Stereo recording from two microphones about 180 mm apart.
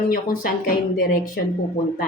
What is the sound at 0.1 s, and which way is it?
Speech, 55° left (ahead or behind).